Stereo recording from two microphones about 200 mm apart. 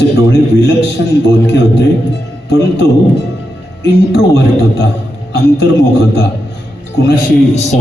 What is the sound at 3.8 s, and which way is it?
A man's voice, 60° left (ahead or behind).